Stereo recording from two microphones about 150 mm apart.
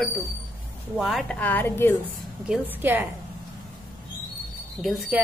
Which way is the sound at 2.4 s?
5° right (ahead or behind).